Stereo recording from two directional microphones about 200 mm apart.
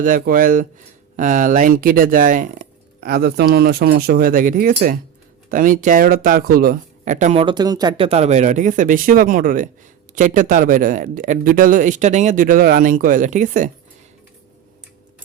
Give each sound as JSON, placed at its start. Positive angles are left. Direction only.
{"t": 0.0, "sound": "speech", "side_deg": -40}
{"t": 7.4, "sound": "speech", "side_deg": -20}